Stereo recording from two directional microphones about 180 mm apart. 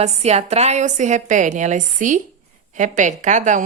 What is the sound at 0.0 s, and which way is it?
A woman's voice, 35° right (ahead or behind).